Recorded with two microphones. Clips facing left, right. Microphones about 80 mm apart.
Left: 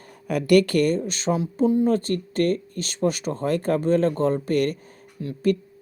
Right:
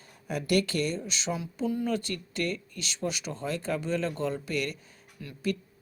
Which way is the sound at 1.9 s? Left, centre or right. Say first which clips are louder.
Left 9 dB; left.